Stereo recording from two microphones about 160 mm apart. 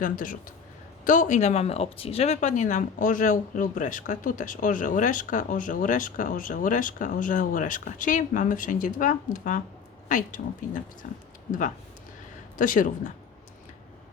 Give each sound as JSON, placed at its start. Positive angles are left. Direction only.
{"t": 0.0, "sound": "speech", "side_deg": 60}
{"t": 12.5, "sound": "speech", "side_deg": 55}